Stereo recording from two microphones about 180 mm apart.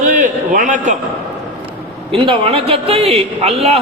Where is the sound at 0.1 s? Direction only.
45° right (ahead or behind).